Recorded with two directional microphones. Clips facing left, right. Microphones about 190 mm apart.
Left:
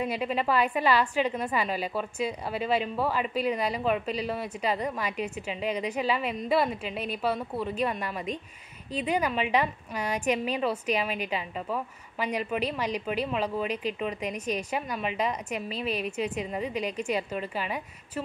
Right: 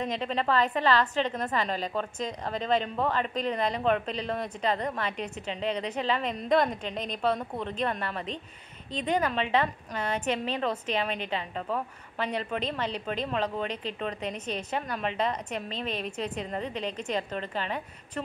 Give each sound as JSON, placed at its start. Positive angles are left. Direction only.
{"t": 0.0, "sound": "a woman's voice", "side_deg": 10}